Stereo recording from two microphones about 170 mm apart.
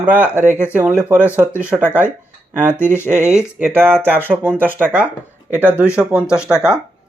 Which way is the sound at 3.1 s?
40° right (ahead or behind).